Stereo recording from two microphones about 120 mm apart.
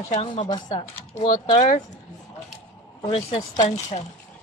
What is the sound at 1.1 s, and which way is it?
Speech, 90° left.